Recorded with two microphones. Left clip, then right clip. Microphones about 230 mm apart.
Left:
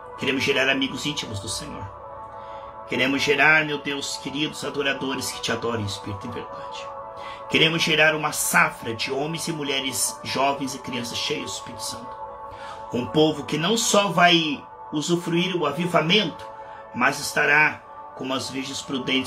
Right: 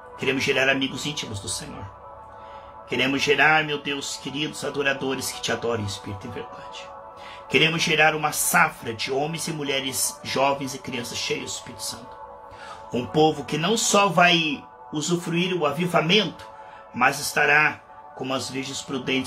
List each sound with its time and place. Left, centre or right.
0.2 s speech: centre
2.9 s speech: centre
7.5 s speech: centre